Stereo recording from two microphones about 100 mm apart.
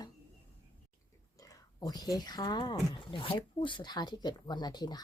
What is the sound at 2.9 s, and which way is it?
Speech, 60° left (ahead or behind).